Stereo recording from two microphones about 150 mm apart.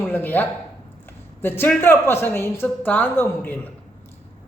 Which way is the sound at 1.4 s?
15° left (ahead or behind).